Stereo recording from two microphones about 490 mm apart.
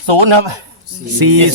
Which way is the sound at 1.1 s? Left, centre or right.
Right.